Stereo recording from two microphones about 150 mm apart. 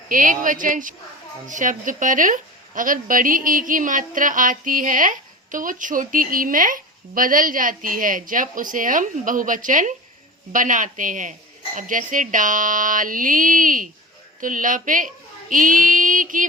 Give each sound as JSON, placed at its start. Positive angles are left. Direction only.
{"t": 0.1, "sound": "a woman's voice", "side_deg": -65}